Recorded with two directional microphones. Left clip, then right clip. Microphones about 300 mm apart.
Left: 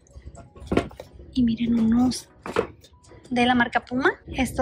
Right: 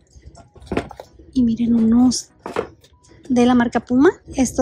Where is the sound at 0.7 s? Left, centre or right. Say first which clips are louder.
Even; centre.